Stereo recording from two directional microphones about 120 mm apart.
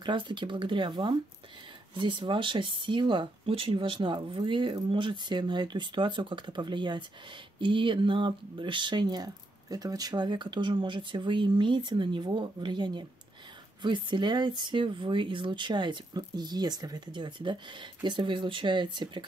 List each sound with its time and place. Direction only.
0.0 s speech: 40° right (ahead or behind)